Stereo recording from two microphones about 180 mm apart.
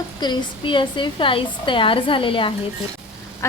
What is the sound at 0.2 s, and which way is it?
A woman's voice, 25° left (ahead or behind).